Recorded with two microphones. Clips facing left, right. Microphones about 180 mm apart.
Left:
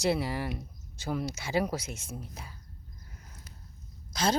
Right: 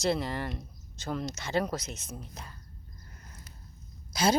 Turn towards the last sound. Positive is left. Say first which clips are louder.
# right 2 dB
turn(degrees=-10)  # may be behind; listen again after turning